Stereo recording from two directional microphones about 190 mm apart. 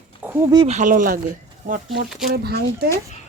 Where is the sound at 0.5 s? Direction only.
25° right (ahead or behind).